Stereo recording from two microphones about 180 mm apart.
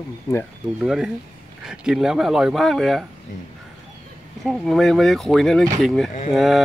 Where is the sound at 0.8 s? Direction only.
5° right (ahead or behind).